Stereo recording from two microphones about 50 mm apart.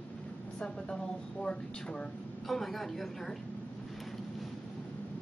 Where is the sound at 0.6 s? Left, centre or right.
Centre.